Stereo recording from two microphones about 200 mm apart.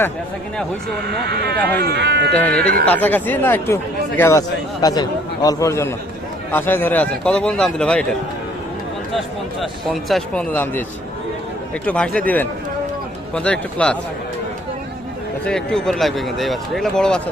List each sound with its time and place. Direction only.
1.2 s speech: 55° right (ahead or behind)
2.3 s a man's voice: 5° left (ahead or behind)
9.1 s speech: centre (ahead or behind)
11.9 s a man's voice: 5° left (ahead or behind)
15.4 s speech: 5° left (ahead or behind)